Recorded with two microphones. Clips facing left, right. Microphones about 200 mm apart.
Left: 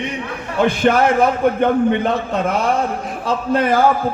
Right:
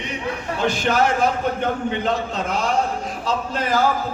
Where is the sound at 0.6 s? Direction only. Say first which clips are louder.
Left 5 dB; 60° left (ahead or behind).